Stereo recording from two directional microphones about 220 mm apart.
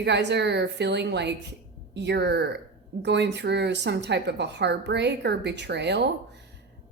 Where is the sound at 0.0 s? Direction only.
50° right (ahead or behind).